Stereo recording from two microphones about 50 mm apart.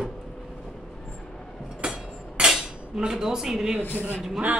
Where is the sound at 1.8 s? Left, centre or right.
Centre.